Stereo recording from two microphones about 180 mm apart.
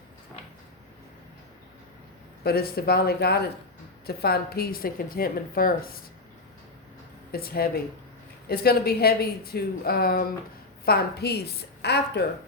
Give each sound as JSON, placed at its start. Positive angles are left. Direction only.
{"t": 2.4, "sound": "speech", "side_deg": 60}
{"t": 7.3, "sound": "speech", "side_deg": 55}